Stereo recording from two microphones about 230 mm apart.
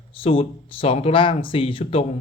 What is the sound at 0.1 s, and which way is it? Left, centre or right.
Speech, left.